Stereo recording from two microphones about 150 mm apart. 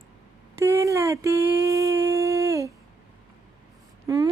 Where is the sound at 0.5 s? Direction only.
20° right (ahead or behind).